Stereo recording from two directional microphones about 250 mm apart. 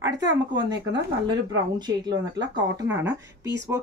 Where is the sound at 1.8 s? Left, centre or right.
Centre.